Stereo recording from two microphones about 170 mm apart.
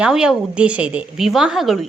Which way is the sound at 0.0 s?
5° right (ahead or behind).